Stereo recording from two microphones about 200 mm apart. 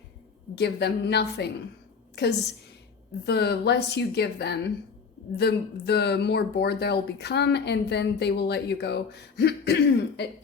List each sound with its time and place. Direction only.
0.6 s speech: 55° left (ahead or behind)
3.2 s speech: 55° left (ahead or behind)